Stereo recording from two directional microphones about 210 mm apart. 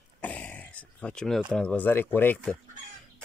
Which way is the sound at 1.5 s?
5° left (ahead or behind).